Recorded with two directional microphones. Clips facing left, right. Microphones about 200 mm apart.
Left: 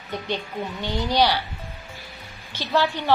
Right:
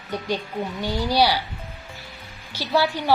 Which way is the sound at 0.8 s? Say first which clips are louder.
Right 1 dB; 10° right (ahead or behind).